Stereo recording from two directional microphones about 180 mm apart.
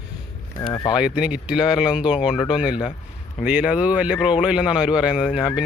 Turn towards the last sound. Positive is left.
turn(degrees=-5)  # may be behind; listen again after turning